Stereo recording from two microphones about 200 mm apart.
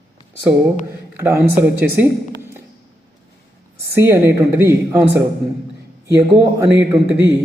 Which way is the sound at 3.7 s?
10° right (ahead or behind).